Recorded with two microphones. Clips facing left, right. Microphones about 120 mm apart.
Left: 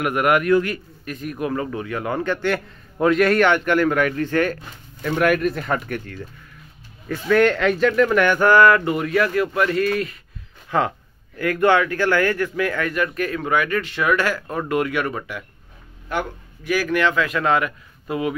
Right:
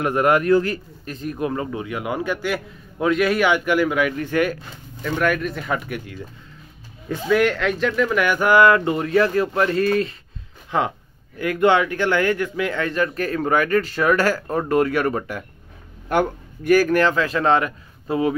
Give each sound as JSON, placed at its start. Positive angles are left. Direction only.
{"t": 0.0, "sound": "a man's voice", "side_deg": -30}
{"t": 5.2, "sound": "speech", "side_deg": 5}
{"t": 10.7, "sound": "a man's voice", "side_deg": -20}